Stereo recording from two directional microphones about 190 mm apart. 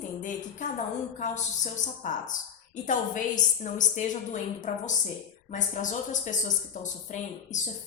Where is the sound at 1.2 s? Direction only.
40° left (ahead or behind).